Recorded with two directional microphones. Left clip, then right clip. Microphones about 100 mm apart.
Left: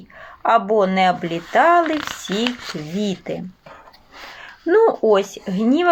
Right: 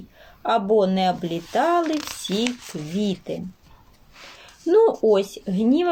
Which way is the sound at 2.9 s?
20° left (ahead or behind).